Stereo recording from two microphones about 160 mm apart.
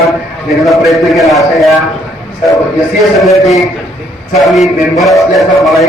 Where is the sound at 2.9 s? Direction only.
Centre (ahead or behind).